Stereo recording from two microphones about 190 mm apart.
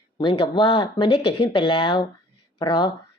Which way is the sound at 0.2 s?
25° left (ahead or behind).